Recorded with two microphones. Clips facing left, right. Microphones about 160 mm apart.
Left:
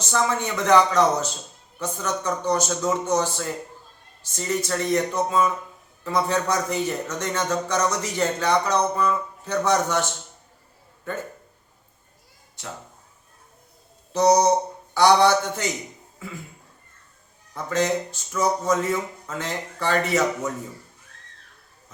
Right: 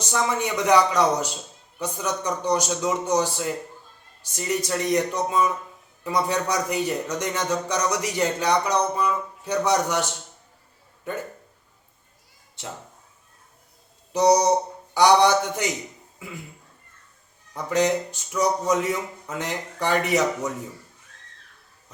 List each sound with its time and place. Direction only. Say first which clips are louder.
0.0 s a man's voice: left 1 dB; 15° right (ahead or behind)
14.1 s a man's voice: left 1 dB; 15° right (ahead or behind)
17.5 s a man's voice: right 1 dB; 15° right (ahead or behind)